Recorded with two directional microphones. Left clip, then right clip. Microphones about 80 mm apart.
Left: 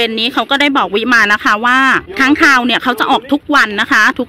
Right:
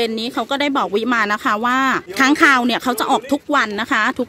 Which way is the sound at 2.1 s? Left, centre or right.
Right.